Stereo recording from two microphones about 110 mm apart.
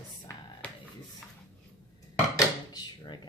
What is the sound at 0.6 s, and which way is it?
Finger snapping, 10° left (ahead or behind).